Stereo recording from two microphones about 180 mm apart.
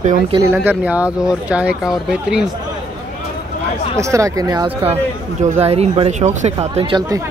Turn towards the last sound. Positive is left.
turn(degrees=-35)  # may be behind; listen again after turning